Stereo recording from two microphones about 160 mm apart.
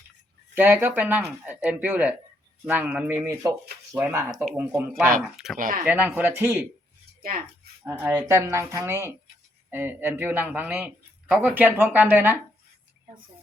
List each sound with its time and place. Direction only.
0.5 s a man's voice: 10° right (ahead or behind)
5.5 s speech: 60° right (ahead or behind)
5.8 s a man's voice: 10° right (ahead or behind)
7.2 s speech: 65° right (ahead or behind)
7.9 s a man's voice: 10° right (ahead or behind)